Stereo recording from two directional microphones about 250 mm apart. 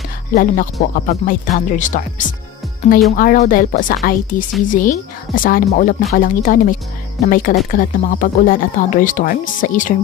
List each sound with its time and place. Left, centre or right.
0.3 s speech: left